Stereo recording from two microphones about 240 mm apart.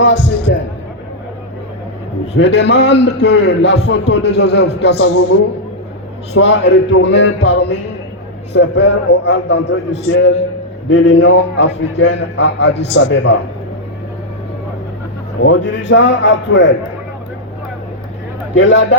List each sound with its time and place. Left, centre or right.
0.0 s a sound: left
2.3 s a man's voice: left
15.4 s a man's voice: left
18.5 s a man's voice: left